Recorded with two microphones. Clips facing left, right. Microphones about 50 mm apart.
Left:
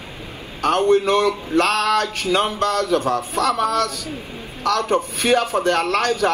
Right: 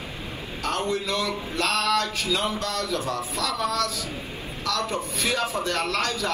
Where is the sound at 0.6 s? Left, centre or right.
Left.